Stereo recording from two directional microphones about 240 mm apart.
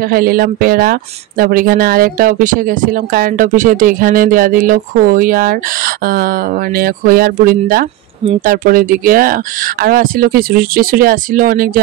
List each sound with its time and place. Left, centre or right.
0.1 s speech: right